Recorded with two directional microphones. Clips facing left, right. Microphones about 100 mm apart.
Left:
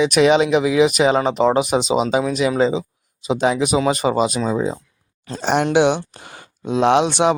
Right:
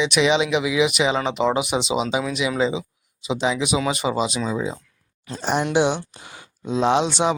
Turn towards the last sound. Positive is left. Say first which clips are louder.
# left 4 dB
turn(degrees=60)  # may be behind; listen again after turning